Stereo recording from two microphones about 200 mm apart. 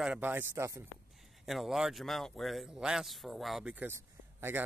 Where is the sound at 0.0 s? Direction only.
5° right (ahead or behind).